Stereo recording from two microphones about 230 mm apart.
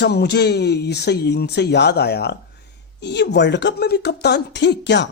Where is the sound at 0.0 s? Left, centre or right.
Left.